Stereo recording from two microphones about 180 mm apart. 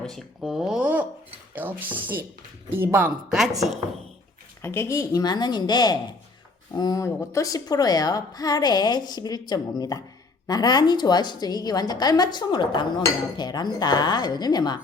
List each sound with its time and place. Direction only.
0.1 s speech: centre (ahead or behind)
4.6 s a woman's voice: 15° left (ahead or behind)